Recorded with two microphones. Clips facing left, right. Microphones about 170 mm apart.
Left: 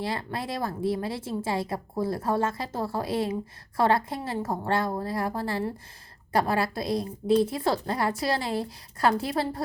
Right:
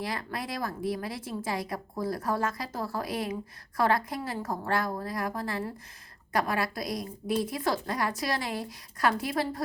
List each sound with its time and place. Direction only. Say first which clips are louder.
0.0 s speech: left 3 dB; 30° left (ahead or behind)